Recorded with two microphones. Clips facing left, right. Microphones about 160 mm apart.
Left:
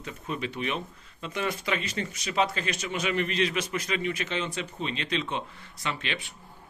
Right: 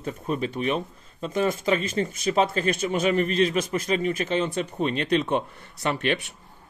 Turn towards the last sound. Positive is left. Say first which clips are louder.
# right 8 dB
turn(degrees=-50)  # may be behind; listen again after turning